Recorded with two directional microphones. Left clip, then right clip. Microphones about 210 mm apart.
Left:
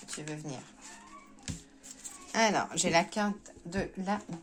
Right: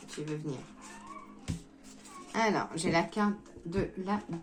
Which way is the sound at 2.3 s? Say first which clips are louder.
Left 2 dB; 50° left (ahead or behind).